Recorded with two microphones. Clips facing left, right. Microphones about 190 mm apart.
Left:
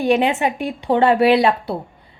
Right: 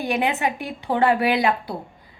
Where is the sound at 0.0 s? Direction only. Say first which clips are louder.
Left 6 dB; 30° left (ahead or behind).